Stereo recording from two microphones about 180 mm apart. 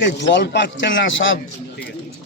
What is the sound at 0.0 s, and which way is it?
Speech, 75° left (ahead or behind).